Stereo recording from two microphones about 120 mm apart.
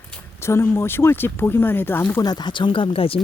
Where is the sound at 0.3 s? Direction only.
20° left (ahead or behind).